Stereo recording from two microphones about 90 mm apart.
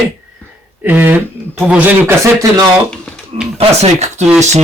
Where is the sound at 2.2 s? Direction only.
35° right (ahead or behind).